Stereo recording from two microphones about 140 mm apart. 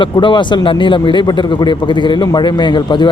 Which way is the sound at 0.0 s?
35° left (ahead or behind).